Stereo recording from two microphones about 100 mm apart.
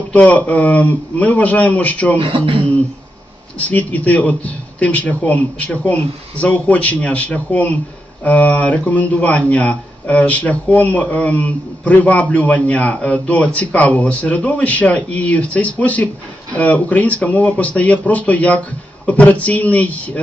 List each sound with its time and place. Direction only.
0.1 s speech: 15° left (ahead or behind)
2.1 s speech: 55° right (ahead or behind)
3.5 s speech: 15° left (ahead or behind)